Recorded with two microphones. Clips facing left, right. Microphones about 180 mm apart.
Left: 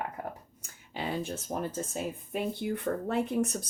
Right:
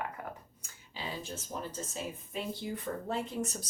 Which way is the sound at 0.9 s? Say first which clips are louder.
Left 7 dB; 60° left (ahead or behind).